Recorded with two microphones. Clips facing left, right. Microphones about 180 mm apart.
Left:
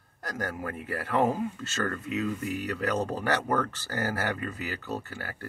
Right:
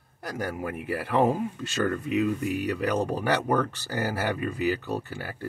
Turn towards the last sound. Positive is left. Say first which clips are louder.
# right 3 dB
turn(degrees=-15)  # may be behind; listen again after turning